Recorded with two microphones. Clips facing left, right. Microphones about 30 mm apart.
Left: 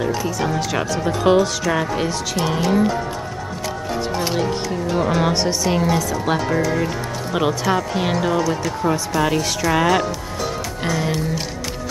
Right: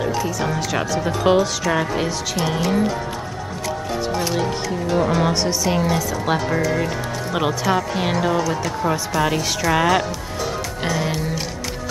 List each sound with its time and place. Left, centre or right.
0.0 s speech: centre
4.4 s speech: centre